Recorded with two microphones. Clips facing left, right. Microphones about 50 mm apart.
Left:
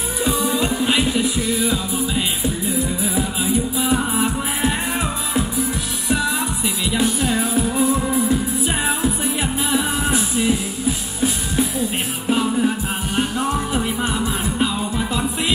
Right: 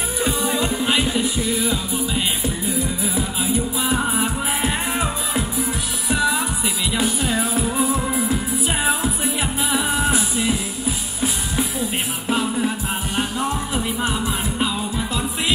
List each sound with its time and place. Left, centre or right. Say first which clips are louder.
0.4 s music: left 2 dB; right
0.7 s music: left 1 dB; centre
3.9 s music: left 2 dB; centre
8.8 s music: left 1 dB; centre